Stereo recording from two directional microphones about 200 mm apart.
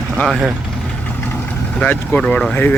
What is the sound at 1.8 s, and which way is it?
Speech, 5° left (ahead or behind).